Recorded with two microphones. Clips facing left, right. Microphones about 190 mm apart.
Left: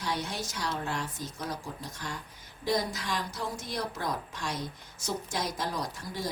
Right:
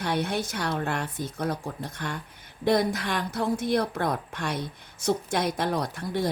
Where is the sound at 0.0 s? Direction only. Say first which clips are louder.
Right 7 dB; 60° right (ahead or behind).